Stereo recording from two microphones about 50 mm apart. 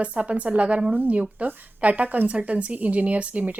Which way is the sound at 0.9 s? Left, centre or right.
Right.